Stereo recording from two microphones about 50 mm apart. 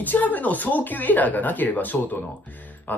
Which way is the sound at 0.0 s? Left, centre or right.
Left.